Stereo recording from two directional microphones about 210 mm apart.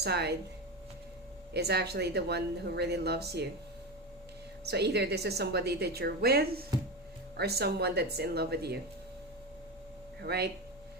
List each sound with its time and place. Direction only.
0.0 s a woman's voice: 50° right (ahead or behind)
1.5 s a woman's voice: 50° right (ahead or behind)
4.6 s a woman's voice: 50° right (ahead or behind)
10.2 s speech: 50° right (ahead or behind)